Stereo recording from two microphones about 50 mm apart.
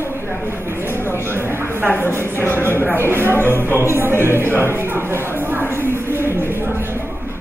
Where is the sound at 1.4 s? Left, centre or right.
Right.